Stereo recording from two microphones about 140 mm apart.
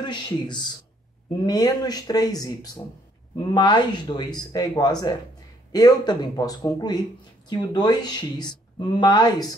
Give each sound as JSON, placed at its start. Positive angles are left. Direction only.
{"t": 0.0, "sound": "speech", "side_deg": 30}